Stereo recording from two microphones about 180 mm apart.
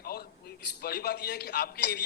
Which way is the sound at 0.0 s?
60° left (ahead or behind).